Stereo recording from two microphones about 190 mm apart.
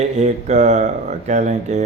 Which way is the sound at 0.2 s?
35° right (ahead or behind).